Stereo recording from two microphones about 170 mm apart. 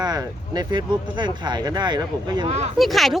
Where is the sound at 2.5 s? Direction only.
40° right (ahead or behind).